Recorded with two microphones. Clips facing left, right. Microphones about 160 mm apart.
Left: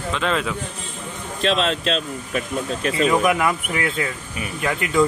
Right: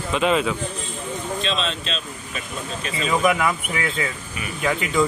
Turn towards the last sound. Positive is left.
turn(degrees=0)  # may be behind; listen again after turning